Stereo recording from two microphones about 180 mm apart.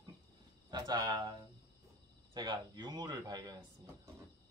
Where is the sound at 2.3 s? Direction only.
25° right (ahead or behind).